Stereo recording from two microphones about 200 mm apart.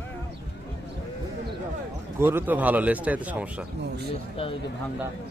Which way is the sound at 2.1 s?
10° right (ahead or behind).